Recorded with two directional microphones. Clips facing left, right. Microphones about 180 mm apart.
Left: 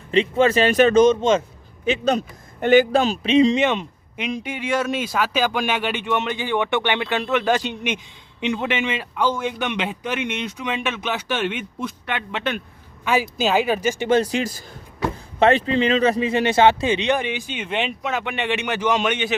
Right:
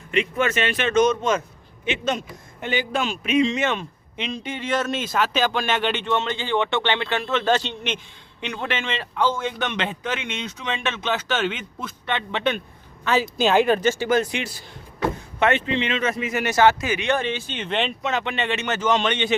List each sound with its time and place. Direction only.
0.1 s speech: 30° left (ahead or behind)
1.8 s speech: 35° left (ahead or behind)
2.6 s speech: 50° left (ahead or behind)
2.9 s speech: 35° left (ahead or behind)
3.6 s speech: 15° left (ahead or behind)
14.0 s speech: 30° left (ahead or behind)
17.1 s speech: 15° left (ahead or behind)